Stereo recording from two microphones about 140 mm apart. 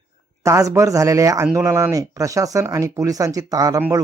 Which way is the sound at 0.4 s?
20° right (ahead or behind).